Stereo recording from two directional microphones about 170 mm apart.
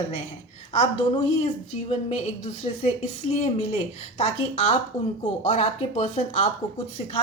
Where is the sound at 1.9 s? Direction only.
40° left (ahead or behind).